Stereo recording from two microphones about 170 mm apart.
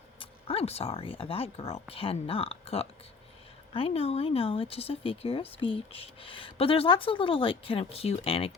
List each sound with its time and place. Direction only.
0.2 s speech: 35° left (ahead or behind)